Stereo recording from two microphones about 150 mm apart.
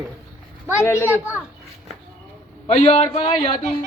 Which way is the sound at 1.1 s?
10° right (ahead or behind).